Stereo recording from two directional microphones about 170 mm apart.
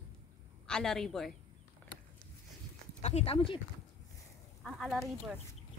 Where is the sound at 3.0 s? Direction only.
40° left (ahead or behind).